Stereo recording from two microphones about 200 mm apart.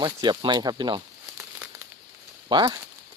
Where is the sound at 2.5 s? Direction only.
25° right (ahead or behind).